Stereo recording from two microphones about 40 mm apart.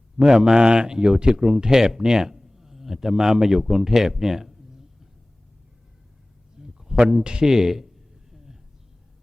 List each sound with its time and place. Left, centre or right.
0.2 s speech: centre
6.6 s a sound: centre
7.5 s speech: centre